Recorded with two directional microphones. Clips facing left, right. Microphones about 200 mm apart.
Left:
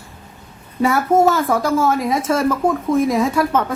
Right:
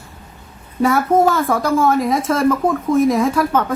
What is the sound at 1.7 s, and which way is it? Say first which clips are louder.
Speech: right 2 dB; centre (ahead or behind).